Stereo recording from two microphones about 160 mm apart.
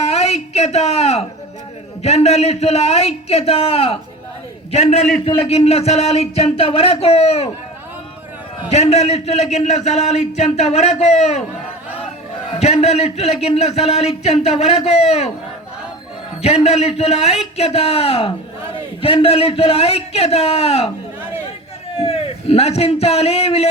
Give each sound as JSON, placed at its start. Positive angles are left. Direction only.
{"t": 0.0, "sound": "a sound", "side_deg": 40}
{"t": 2.0, "sound": "a man's voice", "side_deg": 40}
{"t": 8.7, "sound": "a man's voice", "side_deg": 40}
{"t": 12.5, "sound": "a man's voice", "side_deg": 40}
{"t": 16.4, "sound": "a man's voice", "side_deg": 40}
{"t": 22.0, "sound": "a man's voice", "side_deg": 40}